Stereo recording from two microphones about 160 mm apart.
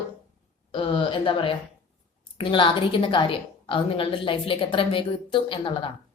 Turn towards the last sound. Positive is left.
turn(degrees=30)  # may be behind; listen again after turning